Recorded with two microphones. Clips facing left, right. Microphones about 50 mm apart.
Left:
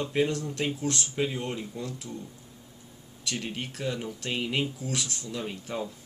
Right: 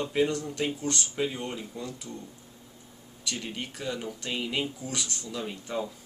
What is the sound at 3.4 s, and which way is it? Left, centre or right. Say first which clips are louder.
Speech: left 3 dB; centre.